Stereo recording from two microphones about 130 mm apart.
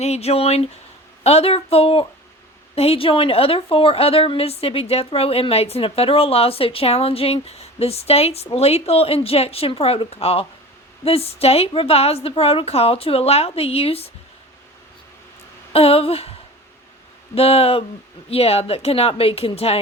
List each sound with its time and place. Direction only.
0.0 s a woman's voice: 55° left (ahead or behind)
15.7 s a woman's voice: 50° left (ahead or behind)
17.3 s a woman's voice: 50° left (ahead or behind)